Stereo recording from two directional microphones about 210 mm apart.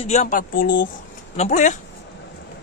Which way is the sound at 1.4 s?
35° left (ahead or behind).